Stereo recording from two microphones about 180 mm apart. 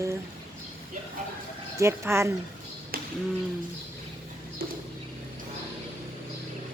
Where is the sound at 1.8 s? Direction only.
15° right (ahead or behind).